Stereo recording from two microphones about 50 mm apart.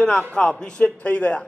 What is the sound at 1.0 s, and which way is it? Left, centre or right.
Speech, left.